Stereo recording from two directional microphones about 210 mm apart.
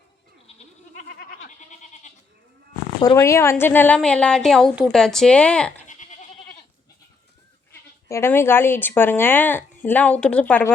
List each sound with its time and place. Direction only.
1.0 s goat: 50° left (ahead or behind)
1.8 s goat: 35° left (ahead or behind)
3.0 s speech: 15° left (ahead or behind)
5.9 s goat: 35° left (ahead or behind)
7.7 s speech: 15° left (ahead or behind)